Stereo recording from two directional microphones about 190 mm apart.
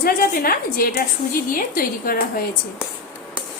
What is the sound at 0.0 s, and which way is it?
A woman's voice, 50° left (ahead or behind).